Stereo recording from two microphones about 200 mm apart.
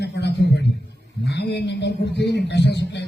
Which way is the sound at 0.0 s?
55° left (ahead or behind).